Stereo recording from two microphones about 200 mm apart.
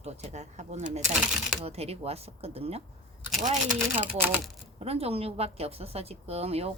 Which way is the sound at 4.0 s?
10° right (ahead or behind).